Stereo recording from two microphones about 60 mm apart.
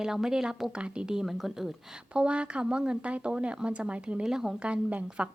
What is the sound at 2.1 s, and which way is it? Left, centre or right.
Speech, centre.